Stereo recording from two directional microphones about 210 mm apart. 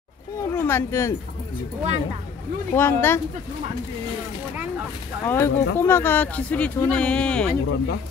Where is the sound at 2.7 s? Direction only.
10° left (ahead or behind).